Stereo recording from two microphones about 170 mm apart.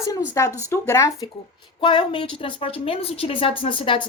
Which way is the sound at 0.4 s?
15° left (ahead or behind).